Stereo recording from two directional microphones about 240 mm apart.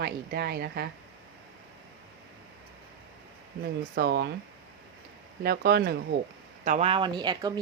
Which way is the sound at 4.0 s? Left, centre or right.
Right.